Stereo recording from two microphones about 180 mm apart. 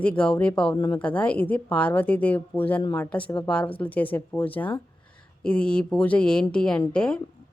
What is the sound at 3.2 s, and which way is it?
Speech, 25° left (ahead or behind).